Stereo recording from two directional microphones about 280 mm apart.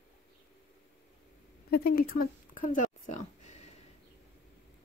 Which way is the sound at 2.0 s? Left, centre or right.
Left.